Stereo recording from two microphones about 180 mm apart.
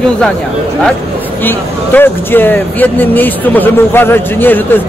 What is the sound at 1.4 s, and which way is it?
Speech, 10° left (ahead or behind).